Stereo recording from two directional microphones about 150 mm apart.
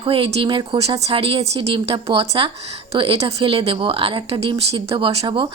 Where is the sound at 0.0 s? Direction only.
35° right (ahead or behind).